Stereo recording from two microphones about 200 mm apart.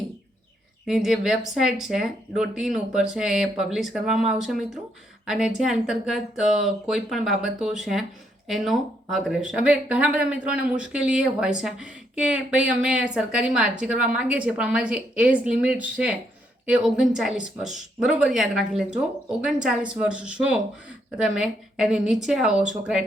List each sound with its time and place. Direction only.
0.9 s speech: centre (ahead or behind)